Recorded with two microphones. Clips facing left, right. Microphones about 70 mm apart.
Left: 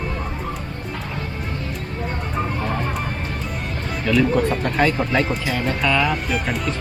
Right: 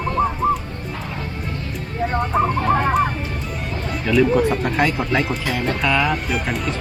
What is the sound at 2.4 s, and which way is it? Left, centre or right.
Fowl, right.